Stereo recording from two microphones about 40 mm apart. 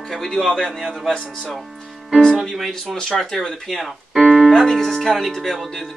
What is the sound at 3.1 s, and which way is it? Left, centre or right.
Speech, centre.